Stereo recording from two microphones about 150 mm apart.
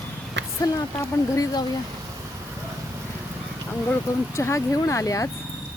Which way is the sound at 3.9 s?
15° left (ahead or behind).